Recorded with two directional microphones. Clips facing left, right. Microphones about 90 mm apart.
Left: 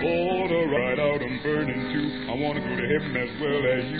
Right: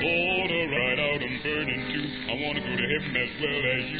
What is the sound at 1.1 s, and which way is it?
Music, 30° left (ahead or behind).